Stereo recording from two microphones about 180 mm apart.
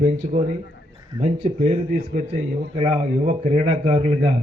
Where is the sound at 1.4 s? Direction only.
35° right (ahead or behind).